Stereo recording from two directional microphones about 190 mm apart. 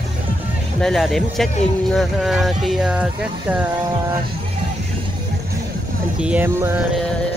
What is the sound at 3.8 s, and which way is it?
Speech, 25° right (ahead or behind).